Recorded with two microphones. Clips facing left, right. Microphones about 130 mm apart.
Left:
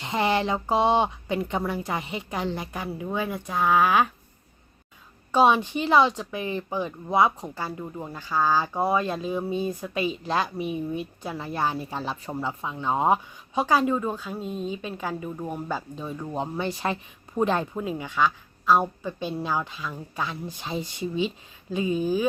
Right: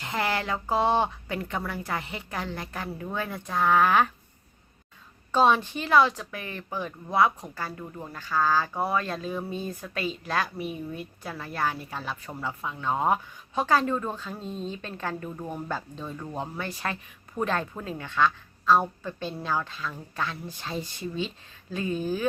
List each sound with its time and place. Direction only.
0.0 s speech: 20° left (ahead or behind)
5.3 s speech: 15° left (ahead or behind)